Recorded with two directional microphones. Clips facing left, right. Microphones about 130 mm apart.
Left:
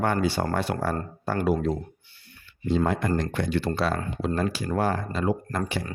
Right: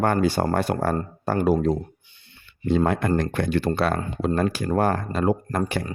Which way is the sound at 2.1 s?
20° right (ahead or behind).